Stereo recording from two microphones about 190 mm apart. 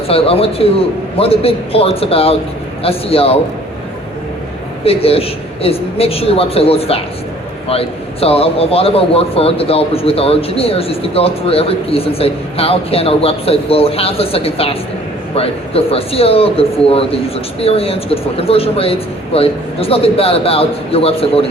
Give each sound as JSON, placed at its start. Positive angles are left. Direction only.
{"t": 0.1, "sound": "a man's voice", "side_deg": 30}
{"t": 4.8, "sound": "a man's voice", "side_deg": 30}